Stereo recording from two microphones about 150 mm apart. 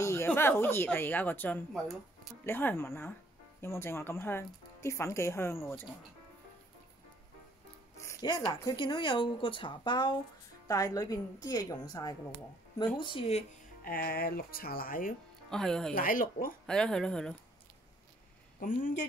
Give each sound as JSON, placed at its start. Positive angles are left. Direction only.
{"t": 0.0, "sound": "speech", "side_deg": 15}
{"t": 8.0, "sound": "a woman's voice", "side_deg": 20}
{"t": 13.0, "sound": "speech", "side_deg": 35}
{"t": 13.8, "sound": "speech", "side_deg": 75}
{"t": 15.5, "sound": "speech", "side_deg": 5}
{"t": 15.9, "sound": "speech", "side_deg": 70}
{"t": 16.6, "sound": "speech", "side_deg": 5}
{"t": 18.6, "sound": "a man's voice", "side_deg": 60}